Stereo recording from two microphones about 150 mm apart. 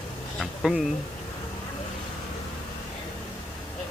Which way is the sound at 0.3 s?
5° right (ahead or behind).